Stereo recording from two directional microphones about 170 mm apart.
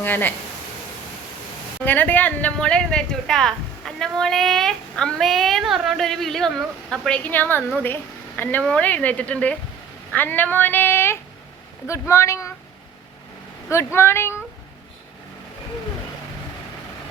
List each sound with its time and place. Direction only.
0.0 s speech: 10° left (ahead or behind)
1.8 s a woman's voice: 10° left (ahead or behind)
13.7 s speech: 15° left (ahead or behind)